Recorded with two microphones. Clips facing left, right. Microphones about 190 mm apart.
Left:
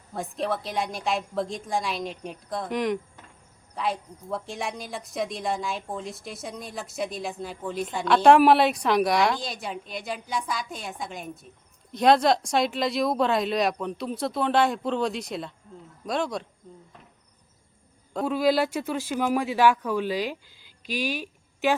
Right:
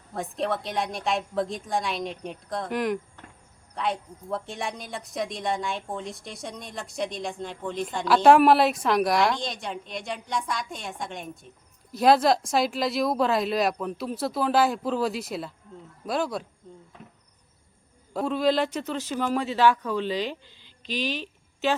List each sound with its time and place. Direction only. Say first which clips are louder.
0.1 s speech: even; centre (ahead or behind)
18.1 s a man's voice: even; centre (ahead or behind)
18.3 s speech: left 1 dB; 10° left (ahead or behind)